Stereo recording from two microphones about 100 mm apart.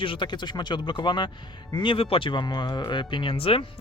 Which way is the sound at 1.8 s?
60° left (ahead or behind).